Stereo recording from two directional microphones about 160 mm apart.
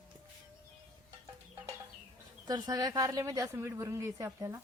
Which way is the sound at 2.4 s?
25° right (ahead or behind).